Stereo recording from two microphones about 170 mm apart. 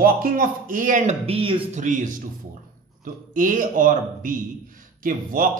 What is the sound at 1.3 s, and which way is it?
Speech, 30° right (ahead or behind).